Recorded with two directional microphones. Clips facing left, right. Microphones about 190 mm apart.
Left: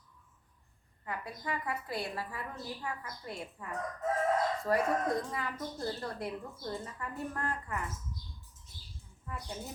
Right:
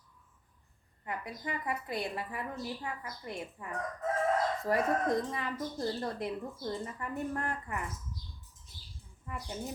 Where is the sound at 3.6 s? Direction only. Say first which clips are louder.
Even; 20° right (ahead or behind).